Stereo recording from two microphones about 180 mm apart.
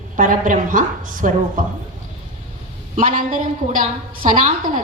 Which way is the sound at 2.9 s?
50° right (ahead or behind).